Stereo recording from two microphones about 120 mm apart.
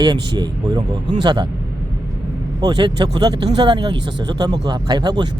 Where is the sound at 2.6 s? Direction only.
35° right (ahead or behind).